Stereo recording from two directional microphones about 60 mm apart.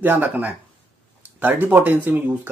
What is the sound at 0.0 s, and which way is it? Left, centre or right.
Speech, right.